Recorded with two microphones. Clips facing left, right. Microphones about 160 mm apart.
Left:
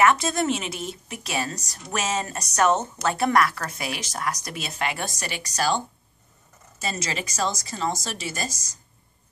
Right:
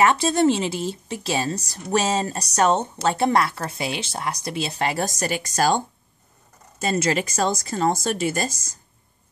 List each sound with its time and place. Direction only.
0.0 s a woman's voice: 30° right (ahead or behind); by 5.8 s 45° right (ahead or behind)
6.8 s speech: 50° right (ahead or behind)